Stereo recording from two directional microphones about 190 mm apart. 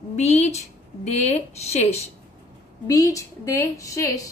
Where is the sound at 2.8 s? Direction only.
20° left (ahead or behind).